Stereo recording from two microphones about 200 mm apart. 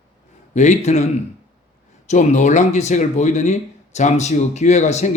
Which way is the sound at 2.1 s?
35° left (ahead or behind).